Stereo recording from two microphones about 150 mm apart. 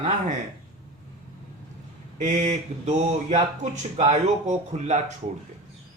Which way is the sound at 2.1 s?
50° right (ahead or behind).